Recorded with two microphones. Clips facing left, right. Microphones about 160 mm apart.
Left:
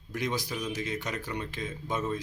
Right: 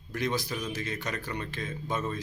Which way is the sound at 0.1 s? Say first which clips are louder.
Right 1 dB; 15° left (ahead or behind).